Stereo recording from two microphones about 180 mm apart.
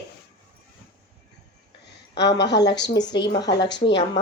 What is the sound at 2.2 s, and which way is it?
Speech, 70° left (ahead or behind).